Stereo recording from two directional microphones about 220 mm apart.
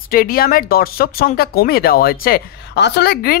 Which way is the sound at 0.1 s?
40° left (ahead or behind).